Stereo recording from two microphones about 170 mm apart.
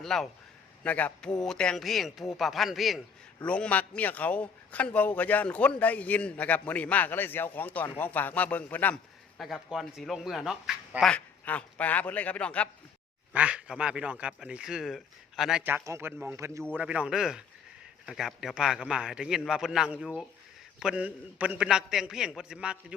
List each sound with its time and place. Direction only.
0.0 s a man's voice: centre (ahead or behind)
9.4 s speech: centre (ahead or behind)
13.3 s a man's voice: 5° right (ahead or behind)